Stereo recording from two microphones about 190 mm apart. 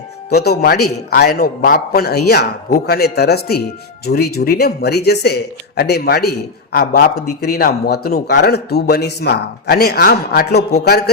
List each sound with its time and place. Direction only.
0.3 s a man's voice: 55° left (ahead or behind)